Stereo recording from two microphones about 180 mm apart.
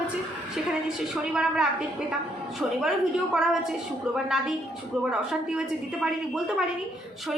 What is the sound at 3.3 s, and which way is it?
A woman's voice, 5° right (ahead or behind).